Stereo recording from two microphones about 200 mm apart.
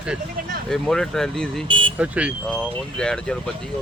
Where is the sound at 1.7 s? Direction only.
25° right (ahead or behind).